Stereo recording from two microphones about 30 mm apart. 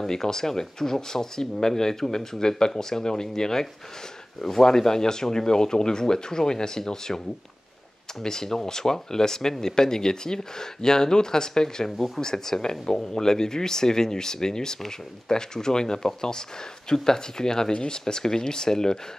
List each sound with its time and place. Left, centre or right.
0.0 s speech: centre
8.2 s speech: centre